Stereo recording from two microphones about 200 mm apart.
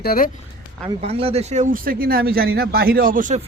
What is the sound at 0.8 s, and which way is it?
Speech, 30° right (ahead or behind).